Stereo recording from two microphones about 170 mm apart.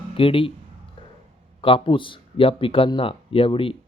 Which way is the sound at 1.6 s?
30° left (ahead or behind).